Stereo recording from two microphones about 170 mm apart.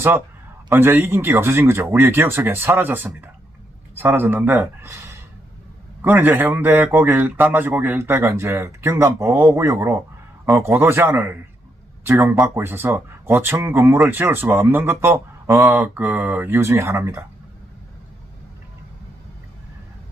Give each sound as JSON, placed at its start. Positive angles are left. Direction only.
{"t": 0.7, "sound": "a man's voice", "side_deg": -15}